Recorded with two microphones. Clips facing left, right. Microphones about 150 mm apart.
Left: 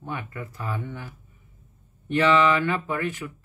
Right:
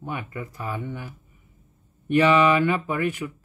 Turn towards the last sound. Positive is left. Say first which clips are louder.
# right 2 dB
turn(degrees=-15)  # may be behind; listen again after turning